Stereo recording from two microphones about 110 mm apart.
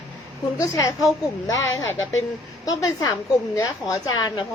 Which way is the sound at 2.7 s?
35° left (ahead or behind).